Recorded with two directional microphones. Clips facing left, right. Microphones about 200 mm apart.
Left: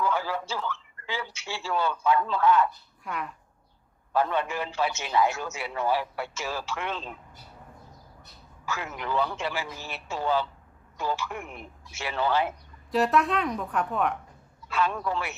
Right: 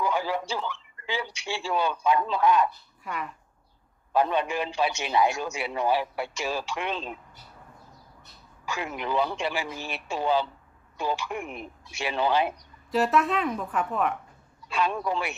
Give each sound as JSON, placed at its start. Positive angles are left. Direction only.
{"t": 0.0, "sound": "a man's voice", "side_deg": -15}
{"t": 3.0, "sound": "speech", "side_deg": 0}
{"t": 4.1, "sound": "a man's voice", "side_deg": -15}
{"t": 8.6, "sound": "a man's voice", "side_deg": -15}
{"t": 12.9, "sound": "speech", "side_deg": 0}
{"t": 14.7, "sound": "a man's voice", "side_deg": -15}